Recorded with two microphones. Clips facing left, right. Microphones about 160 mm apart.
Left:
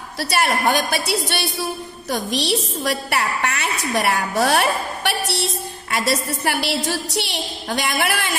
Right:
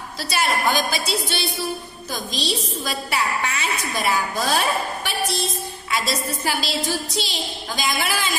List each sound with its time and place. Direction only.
0.2 s a woman's voice: 60° left (ahead or behind)
5.9 s a woman's voice: 60° left (ahead or behind)